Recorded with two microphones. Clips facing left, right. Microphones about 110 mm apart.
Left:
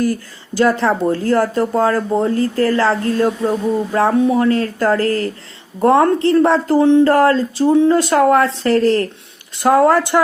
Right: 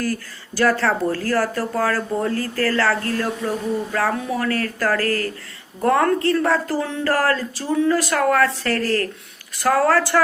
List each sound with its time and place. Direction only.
0.0 s speech: 20° left (ahead or behind)